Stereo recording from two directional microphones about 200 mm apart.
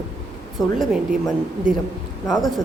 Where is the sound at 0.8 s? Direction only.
Centre (ahead or behind).